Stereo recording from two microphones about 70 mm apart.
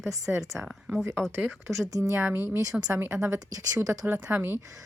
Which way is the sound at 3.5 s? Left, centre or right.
Right.